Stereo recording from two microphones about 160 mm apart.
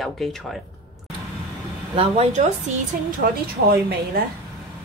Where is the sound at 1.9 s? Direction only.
40° right (ahead or behind).